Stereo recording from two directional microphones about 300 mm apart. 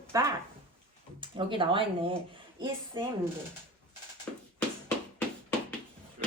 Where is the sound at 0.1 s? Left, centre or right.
Centre.